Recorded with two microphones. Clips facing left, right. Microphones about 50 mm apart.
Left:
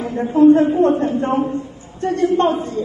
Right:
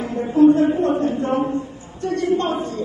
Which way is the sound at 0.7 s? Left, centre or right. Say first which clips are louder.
Left 4 dB; left.